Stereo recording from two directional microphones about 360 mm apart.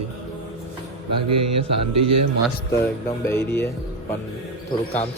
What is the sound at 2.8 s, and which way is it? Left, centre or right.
Music, centre.